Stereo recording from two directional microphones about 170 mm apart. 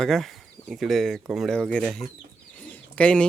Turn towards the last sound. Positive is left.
turn(degrees=5)  # may be behind; listen again after turning